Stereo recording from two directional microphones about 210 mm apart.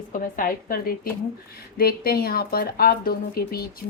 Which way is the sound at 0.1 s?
40° left (ahead or behind).